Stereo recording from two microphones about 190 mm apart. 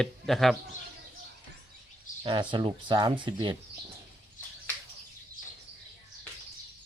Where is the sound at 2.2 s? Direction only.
25° right (ahead or behind).